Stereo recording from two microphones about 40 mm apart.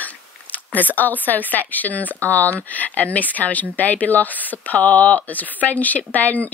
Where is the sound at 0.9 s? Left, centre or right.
Left.